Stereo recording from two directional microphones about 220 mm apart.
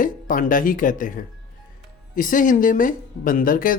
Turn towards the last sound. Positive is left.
turn(degrees=40)  # may be behind; listen again after turning